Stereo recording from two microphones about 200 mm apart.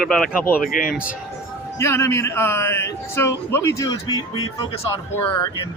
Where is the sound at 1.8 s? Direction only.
15° left (ahead or behind).